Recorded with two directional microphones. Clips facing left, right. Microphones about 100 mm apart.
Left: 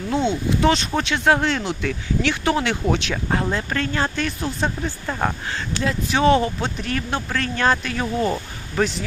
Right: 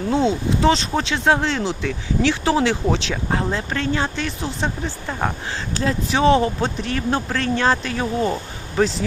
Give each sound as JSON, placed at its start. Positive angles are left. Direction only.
{"t": 0.1, "sound": "speech", "side_deg": -30}
{"t": 5.7, "sound": "speech", "side_deg": -35}